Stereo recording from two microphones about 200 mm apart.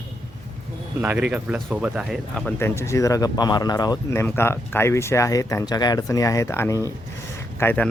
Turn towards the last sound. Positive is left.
turn(degrees=10)  # may be behind; listen again after turning